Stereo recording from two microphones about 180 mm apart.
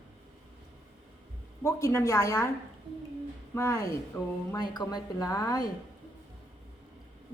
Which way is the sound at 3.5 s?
15° left (ahead or behind).